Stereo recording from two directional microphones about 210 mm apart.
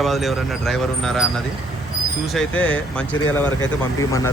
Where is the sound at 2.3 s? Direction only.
5° left (ahead or behind).